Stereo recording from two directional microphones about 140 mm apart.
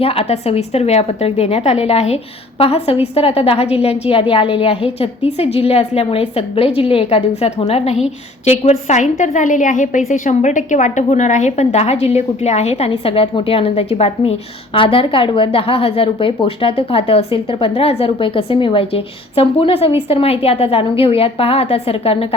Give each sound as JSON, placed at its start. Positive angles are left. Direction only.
{"t": 0.0, "sound": "a woman's voice", "side_deg": 45}